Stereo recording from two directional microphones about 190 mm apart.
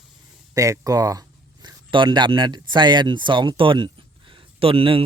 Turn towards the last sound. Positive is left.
turn(degrees=-30)  # may be behind; listen again after turning